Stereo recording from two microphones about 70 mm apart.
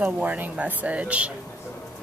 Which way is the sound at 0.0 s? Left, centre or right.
Right.